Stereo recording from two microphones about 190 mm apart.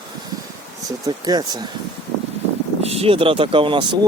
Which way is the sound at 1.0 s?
20° right (ahead or behind).